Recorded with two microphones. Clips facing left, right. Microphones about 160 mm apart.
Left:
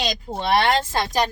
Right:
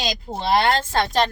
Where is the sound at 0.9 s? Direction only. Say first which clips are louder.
Right 2 dB; 10° left (ahead or behind).